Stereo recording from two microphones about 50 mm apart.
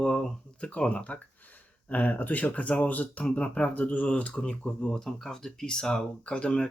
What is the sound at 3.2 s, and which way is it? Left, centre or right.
Speech, left.